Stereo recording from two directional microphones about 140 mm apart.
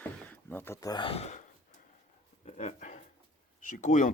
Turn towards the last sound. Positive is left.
turn(degrees=65)  # may be behind; listen again after turning